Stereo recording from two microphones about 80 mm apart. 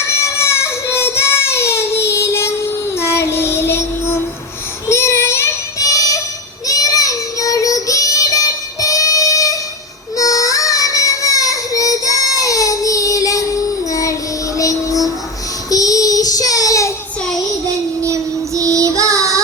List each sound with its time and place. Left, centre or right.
0.3 s child singing: left
18.0 s child singing: right